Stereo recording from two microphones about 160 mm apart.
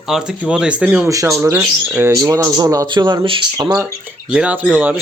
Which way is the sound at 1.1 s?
20° right (ahead or behind).